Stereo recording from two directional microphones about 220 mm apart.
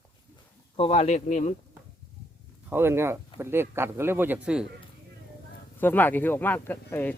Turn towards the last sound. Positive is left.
turn(degrees=10)  # may be behind; listen again after turning